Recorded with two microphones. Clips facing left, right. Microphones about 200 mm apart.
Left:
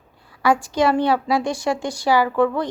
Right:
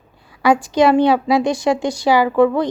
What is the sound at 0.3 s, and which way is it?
A woman's voice, 15° right (ahead or behind).